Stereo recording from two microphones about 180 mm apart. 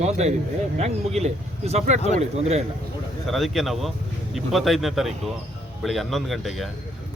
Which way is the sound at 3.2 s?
Centre (ahead or behind).